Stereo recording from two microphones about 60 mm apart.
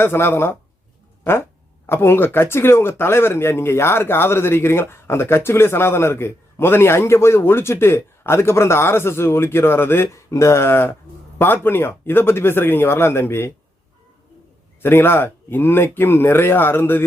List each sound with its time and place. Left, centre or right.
0.0 s speech: left
1.9 s speech: left
10.3 s speech: left
14.8 s speech: left